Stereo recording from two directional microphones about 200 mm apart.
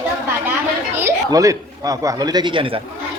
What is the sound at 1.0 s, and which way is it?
Speech, 15° right (ahead or behind).